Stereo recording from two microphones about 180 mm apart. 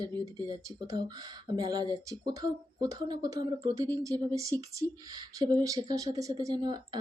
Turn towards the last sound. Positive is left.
turn(degrees=-25)  # may be behind; listen again after turning